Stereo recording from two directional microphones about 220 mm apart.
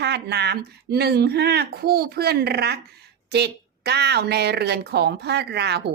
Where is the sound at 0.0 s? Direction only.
50° right (ahead or behind).